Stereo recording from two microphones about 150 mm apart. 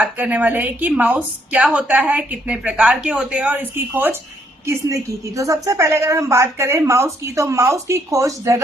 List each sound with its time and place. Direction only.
0.0 s a woman's voice: 10° right (ahead or behind)